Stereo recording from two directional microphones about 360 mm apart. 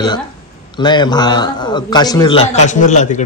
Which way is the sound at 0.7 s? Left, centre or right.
Centre.